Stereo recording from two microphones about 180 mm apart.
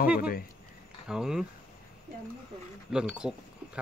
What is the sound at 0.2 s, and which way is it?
Speech, 55° left (ahead or behind).